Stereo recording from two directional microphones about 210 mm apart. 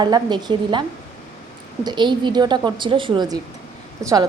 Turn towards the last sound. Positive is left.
turn(degrees=-15)  # may be behind; listen again after turning